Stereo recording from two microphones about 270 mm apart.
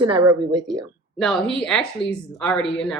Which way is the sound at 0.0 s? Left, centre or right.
Centre.